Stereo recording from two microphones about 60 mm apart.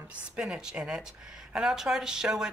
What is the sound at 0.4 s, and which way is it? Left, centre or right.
Speech, centre.